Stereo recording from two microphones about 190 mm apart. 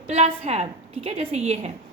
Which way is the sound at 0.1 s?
35° right (ahead or behind).